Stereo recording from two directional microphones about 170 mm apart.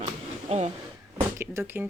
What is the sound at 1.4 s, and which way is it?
Speech, 15° right (ahead or behind).